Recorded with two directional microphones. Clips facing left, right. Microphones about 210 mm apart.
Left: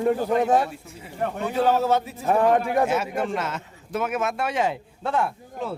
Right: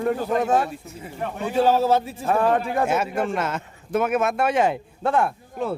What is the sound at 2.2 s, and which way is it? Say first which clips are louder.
Speech: left 1 dB; 15° left (ahead or behind).